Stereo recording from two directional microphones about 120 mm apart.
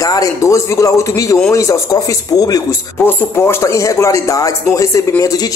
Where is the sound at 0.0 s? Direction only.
30° left (ahead or behind).